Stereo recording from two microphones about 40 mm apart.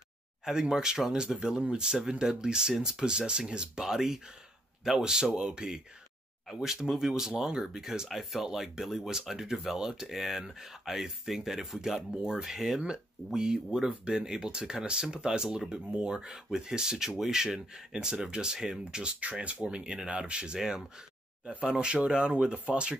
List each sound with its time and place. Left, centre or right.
0.5 s speech: centre
6.4 s speech: centre; by 16.3 s right
16.3 s speech: centre
19.1 s speech: right